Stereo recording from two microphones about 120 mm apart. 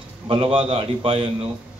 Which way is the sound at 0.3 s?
50° right (ahead or behind).